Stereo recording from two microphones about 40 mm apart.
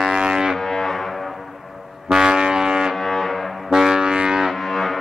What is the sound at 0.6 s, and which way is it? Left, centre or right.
Music, centre.